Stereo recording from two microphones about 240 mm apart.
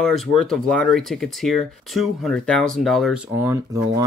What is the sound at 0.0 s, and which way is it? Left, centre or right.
Speech, centre.